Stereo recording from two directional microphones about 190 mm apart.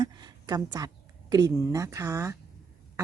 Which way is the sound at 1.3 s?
20° right (ahead or behind).